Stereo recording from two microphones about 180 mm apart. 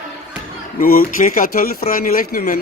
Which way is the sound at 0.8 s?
55° left (ahead or behind).